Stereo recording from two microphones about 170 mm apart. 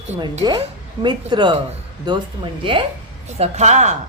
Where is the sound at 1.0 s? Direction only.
25° right (ahead or behind).